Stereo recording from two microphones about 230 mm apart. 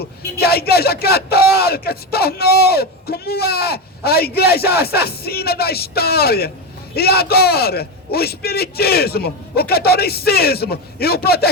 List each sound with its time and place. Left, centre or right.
0.0 s a man's voice: left